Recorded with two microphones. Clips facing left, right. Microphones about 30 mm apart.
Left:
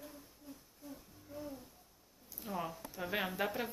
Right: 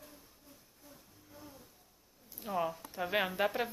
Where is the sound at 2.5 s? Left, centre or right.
Centre.